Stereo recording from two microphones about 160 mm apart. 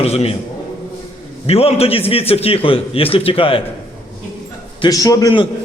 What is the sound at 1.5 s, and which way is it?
A man's voice, 40° left (ahead or behind).